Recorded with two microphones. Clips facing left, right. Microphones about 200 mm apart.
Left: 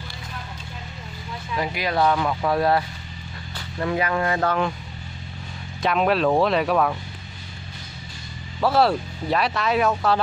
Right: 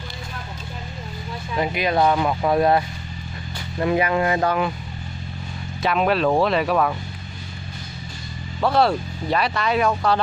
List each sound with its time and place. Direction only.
1.5 s speech: 20° right (ahead or behind)
5.8 s speech: centre (ahead or behind)
8.5 s speech: 5° left (ahead or behind)